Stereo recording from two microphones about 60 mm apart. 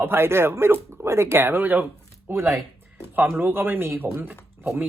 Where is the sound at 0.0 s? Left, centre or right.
Right.